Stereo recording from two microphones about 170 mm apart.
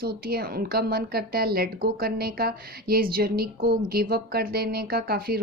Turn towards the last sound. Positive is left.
turn(degrees=-65)  # may be behind; listen again after turning